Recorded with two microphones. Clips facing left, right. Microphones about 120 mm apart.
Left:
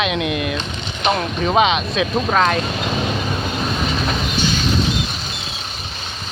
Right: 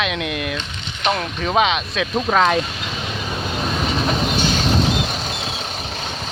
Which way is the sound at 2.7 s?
40° left (ahead or behind).